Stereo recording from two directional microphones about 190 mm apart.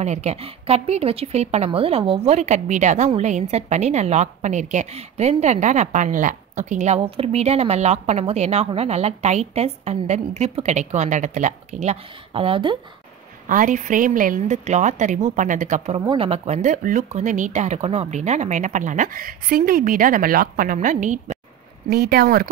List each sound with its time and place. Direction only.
0.0 s a woman's voice: 35° right (ahead or behind)
13.5 s a woman's voice: 45° right (ahead or behind)
16.0 s speech: 20° right (ahead or behind)
16.3 s a woman's voice: 35° right (ahead or behind)
21.8 s speech: 55° right (ahead or behind)